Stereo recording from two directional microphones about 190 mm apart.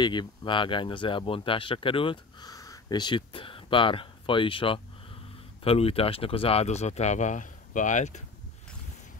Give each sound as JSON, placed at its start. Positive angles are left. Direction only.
{"t": 0.0, "sound": "speech", "side_deg": 25}